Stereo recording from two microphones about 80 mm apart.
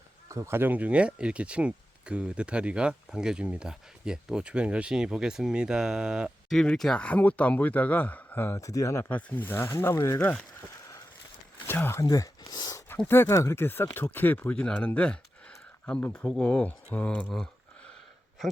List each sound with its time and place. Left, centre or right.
0.3 s speech: right; by 6.3 s centre
6.5 s speech: centre; by 8.6 s left
8.6 s speech: left
9.0 s speech: left
11.6 s speech: left
11.9 s speech: left
12.4 s a sound: left
13.1 s speech: left
17.2 s a sound: centre